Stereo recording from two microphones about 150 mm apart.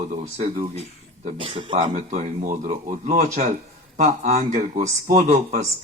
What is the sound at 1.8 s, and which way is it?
Speech, 55° right (ahead or behind).